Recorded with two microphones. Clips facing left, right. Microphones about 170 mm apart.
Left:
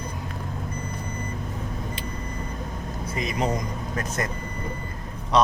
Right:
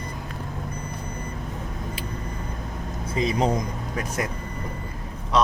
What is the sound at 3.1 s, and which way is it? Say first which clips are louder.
Speech: right 4 dB; 30° right (ahead or behind).